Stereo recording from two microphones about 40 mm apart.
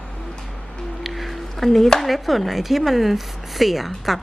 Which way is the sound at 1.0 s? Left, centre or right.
Centre.